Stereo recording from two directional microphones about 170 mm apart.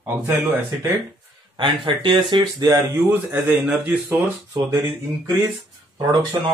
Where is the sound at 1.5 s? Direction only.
30° right (ahead or behind).